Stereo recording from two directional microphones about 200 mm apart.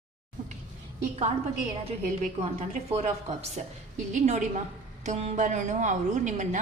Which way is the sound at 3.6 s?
35° right (ahead or behind).